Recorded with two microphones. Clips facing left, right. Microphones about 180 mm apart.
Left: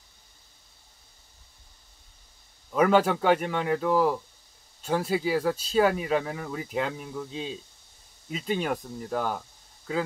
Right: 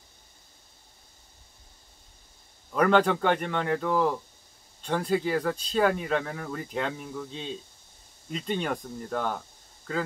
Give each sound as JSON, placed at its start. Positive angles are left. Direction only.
{"t": 2.7, "sound": "speech", "side_deg": 5}